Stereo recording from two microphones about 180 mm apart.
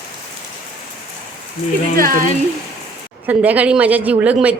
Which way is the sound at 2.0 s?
50° right (ahead or behind).